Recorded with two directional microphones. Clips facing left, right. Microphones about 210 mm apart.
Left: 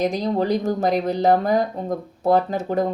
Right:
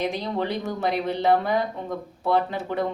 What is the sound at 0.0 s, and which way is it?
Speech, 40° left (ahead or behind).